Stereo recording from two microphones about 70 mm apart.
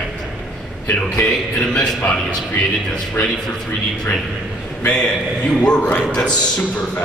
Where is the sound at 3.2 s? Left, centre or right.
Left.